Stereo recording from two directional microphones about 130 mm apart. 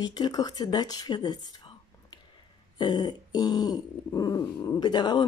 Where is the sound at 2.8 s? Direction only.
35° left (ahead or behind).